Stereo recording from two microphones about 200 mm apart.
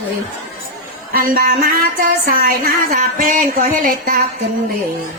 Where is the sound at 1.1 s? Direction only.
45° right (ahead or behind).